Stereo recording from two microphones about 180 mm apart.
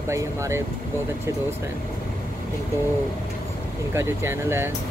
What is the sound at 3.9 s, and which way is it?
Speech, 15° right (ahead or behind).